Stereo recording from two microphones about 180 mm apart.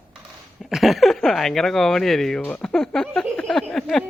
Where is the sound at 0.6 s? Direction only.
Centre (ahead or behind).